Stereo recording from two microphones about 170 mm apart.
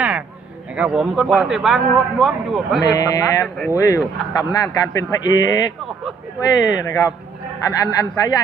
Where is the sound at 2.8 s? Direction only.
20° left (ahead or behind).